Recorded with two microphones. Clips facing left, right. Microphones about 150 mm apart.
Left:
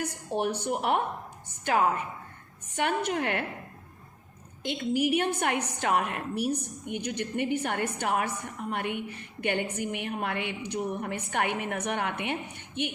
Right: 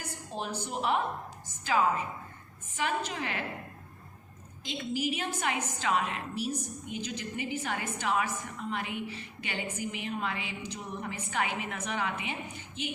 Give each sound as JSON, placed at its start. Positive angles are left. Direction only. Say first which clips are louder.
{"t": 0.0, "sound": "a woman's voice", "louder": "left 8 dB", "side_deg": 70}
{"t": 4.9, "sound": "a woman's voice", "louder": "left 7 dB", "side_deg": 65}